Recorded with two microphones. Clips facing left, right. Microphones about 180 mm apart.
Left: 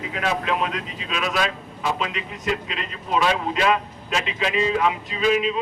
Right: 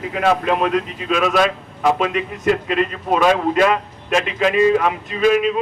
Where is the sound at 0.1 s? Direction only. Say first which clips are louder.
Right 7 dB; 55° right (ahead or behind).